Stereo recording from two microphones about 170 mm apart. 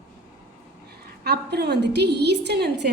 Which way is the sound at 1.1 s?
75° right (ahead or behind).